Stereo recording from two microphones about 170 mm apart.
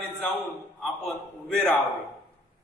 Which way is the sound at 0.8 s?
Centre (ahead or behind).